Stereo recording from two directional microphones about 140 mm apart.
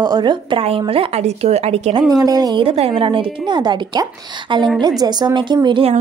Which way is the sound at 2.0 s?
25° right (ahead or behind).